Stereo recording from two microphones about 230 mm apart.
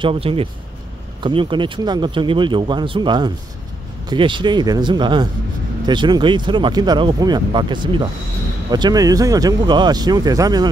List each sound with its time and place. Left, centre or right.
0.0 s speech: right